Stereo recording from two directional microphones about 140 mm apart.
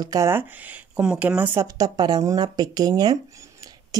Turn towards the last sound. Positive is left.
turn(degrees=-30)  # may be behind; listen again after turning